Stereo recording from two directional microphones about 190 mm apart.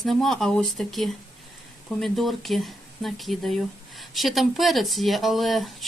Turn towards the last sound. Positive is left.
turn(degrees=0)  # may be behind; listen again after turning